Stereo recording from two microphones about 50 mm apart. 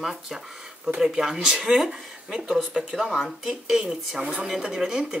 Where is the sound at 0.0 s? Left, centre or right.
Centre.